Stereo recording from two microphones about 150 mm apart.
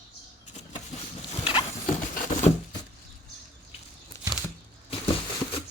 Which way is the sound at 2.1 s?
55° left (ahead or behind).